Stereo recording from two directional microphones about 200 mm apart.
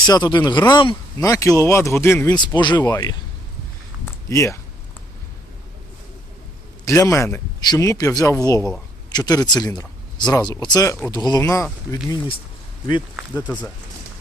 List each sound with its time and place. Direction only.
0.0 s speech: 20° left (ahead or behind)
2.4 s speech: 20° left (ahead or behind)
4.0 s a sound: 15° left (ahead or behind)
6.8 s speech: 15° left (ahead or behind)